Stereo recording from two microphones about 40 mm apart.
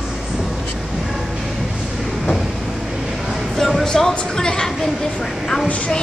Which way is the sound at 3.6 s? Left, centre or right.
Centre.